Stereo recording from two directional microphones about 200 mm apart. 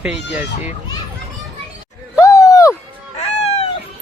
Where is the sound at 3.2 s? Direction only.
30° left (ahead or behind).